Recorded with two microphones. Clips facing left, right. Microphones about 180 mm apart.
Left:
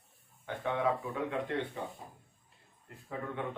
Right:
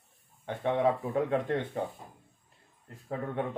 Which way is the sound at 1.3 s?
50° right (ahead or behind).